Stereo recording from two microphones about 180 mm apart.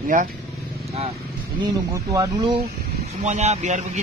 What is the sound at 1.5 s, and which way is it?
Speech, 20° right (ahead or behind).